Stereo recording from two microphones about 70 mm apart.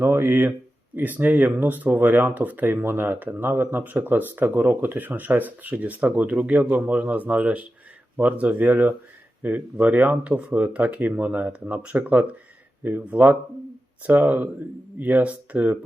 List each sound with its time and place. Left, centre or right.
0.0 s speech: right